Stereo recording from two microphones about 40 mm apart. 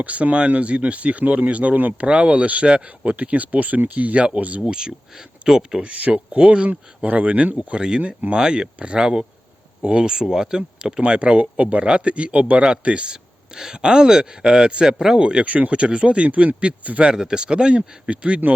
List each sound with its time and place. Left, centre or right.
0.0 s speech: right
4.6 s speech: right
5.4 s a sound: right
5.7 s speech: right
6.7 s speech: right
7.7 s speech: right
8.0 s speech: right
8.4 s speech: right
11.0 s speech: right
15.4 s speech: right
17.1 s speech: right